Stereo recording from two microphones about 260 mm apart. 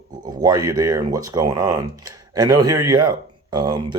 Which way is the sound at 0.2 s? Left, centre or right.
Centre.